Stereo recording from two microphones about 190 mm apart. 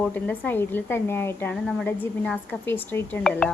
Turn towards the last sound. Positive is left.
turn(degrees=5)  # may be behind; listen again after turning